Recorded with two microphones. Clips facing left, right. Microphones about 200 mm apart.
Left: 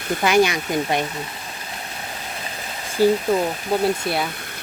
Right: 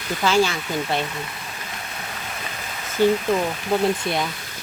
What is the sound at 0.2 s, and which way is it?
Speech, 15° left (ahead or behind).